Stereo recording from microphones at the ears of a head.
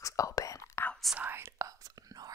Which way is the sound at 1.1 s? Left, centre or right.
Right.